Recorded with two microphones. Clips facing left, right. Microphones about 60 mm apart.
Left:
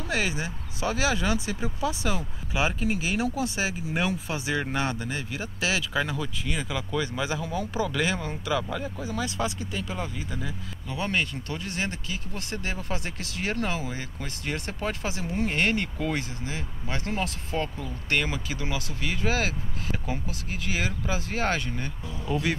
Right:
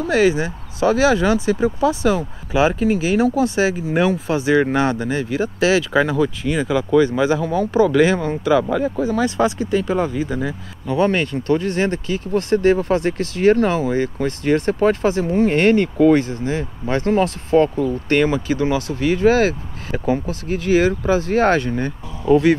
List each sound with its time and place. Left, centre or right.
0.1 s speech: right
3.5 s speech: right
8.6 s speech: right
17.6 s speech: right
18.0 s speech: right